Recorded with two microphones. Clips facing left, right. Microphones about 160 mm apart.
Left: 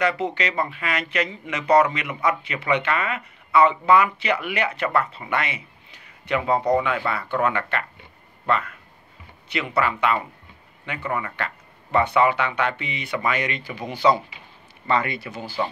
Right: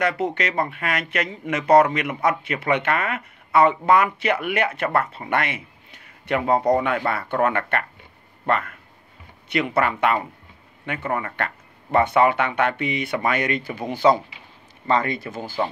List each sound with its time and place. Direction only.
0.0 s speech: 50° right (ahead or behind)
14.9 s speech: 40° right (ahead or behind)